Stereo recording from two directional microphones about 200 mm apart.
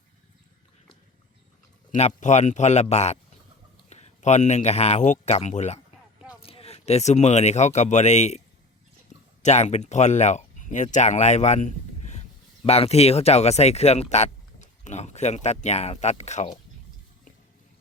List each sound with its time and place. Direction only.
1.9 s speech: 35° left (ahead or behind)
9.4 s speech: 35° left (ahead or behind)